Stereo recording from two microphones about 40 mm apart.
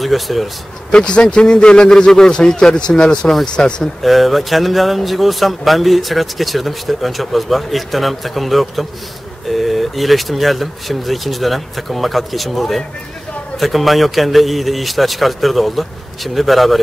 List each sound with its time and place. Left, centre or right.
0.0 s speech: centre
0.9 s a man's voice: left
4.0 s speech: centre